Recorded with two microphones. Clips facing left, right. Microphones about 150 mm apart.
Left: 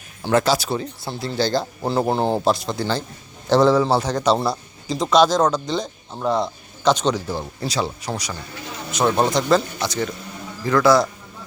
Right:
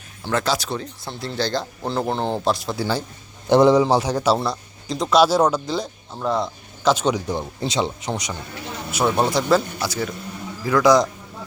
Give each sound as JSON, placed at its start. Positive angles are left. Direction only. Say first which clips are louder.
{"t": 0.3, "sound": "a man's voice", "louder": "left 4 dB", "side_deg": 5}
{"t": 4.4, "sound": "speech", "louder": "left 2 dB", "side_deg": 5}
{"t": 7.6, "sound": "speech", "louder": "right 1 dB", "side_deg": -20}
{"t": 8.9, "sound": "a man's voice", "louder": "left 1 dB", "side_deg": -5}